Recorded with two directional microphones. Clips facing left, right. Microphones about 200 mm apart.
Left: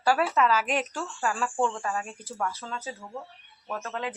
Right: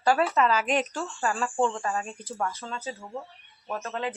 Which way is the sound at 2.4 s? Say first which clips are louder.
Even; 15° right (ahead or behind).